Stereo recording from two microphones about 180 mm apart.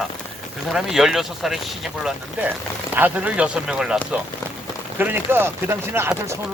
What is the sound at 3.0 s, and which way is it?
Speech, 5° right (ahead or behind).